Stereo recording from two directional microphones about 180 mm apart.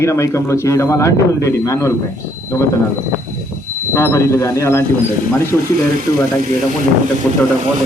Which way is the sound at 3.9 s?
15° left (ahead or behind).